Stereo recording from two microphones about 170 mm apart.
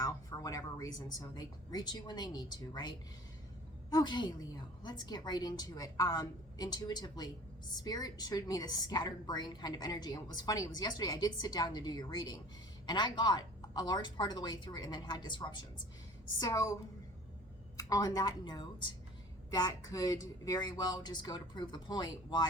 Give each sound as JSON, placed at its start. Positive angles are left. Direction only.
{"t": 0.0, "sound": "a woman's voice", "side_deg": 20}
{"t": 17.7, "sound": "a woman's voice", "side_deg": 20}